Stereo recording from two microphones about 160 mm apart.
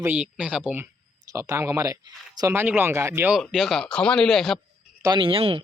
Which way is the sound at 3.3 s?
Centre (ahead or behind).